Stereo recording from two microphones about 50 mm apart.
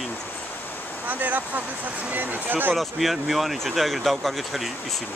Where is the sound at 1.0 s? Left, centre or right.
Right.